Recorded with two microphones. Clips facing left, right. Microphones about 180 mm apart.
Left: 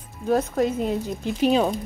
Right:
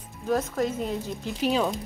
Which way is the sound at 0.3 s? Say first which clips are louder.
Left 4 dB; 35° left (ahead or behind).